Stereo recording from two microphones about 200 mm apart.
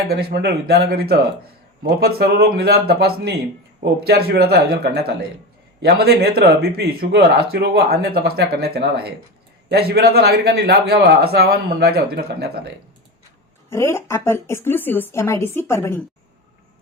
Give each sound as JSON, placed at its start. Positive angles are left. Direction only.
{"t": 0.1, "sound": "speech", "side_deg": -50}
{"t": 13.7, "sound": "speech", "side_deg": 15}